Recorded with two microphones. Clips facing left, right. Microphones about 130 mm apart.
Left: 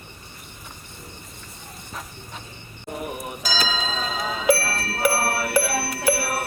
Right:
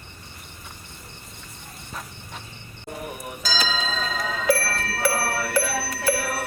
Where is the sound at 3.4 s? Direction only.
15° left (ahead or behind).